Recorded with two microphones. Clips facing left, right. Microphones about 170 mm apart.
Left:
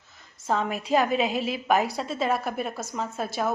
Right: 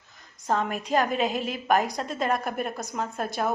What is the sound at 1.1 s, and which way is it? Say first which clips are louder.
Speech: left 1 dB; 45° right (ahead or behind).